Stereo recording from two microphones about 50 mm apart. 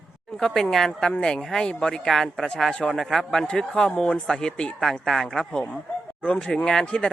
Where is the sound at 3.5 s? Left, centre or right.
Centre.